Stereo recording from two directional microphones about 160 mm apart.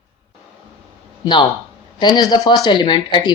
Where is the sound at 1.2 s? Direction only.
30° left (ahead or behind).